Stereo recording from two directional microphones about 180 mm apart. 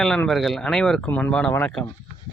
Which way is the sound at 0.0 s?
Centre (ahead or behind).